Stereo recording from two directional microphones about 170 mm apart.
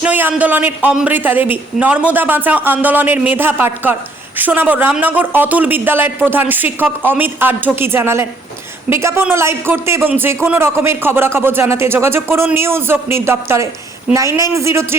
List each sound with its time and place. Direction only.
0.0 s speech: 10° right (ahead or behind)